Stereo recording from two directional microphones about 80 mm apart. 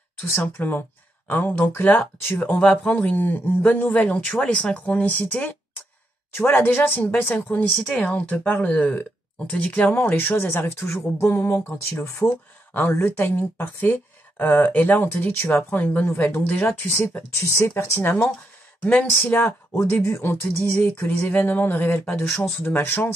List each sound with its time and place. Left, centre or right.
0.4 s speech: left
2.6 s speech: centre
7.7 s speech: centre
16.9 s speech: left